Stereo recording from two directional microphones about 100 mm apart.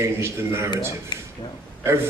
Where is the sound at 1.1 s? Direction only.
45° left (ahead or behind).